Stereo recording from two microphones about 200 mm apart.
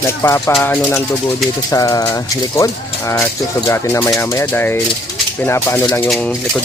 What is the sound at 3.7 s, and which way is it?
Speech, 15° left (ahead or behind).